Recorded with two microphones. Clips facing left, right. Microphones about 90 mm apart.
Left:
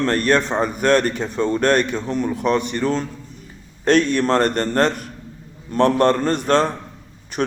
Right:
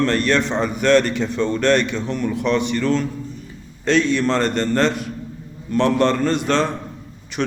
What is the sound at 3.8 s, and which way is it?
A man's voice, 50° left (ahead or behind).